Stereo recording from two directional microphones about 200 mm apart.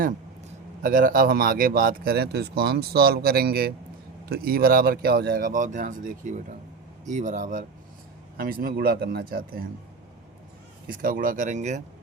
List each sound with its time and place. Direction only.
0.8 s speech: 45° right (ahead or behind)
10.8 s speech: 45° right (ahead or behind)